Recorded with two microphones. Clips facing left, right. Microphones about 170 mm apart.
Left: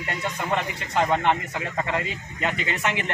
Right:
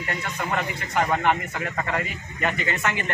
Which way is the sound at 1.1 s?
20° left (ahead or behind).